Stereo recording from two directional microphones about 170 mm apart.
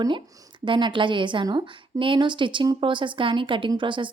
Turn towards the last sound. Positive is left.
turn(degrees=-30)  # may be behind; listen again after turning